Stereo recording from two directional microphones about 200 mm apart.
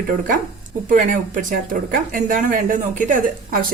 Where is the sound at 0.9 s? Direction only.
40° right (ahead or behind).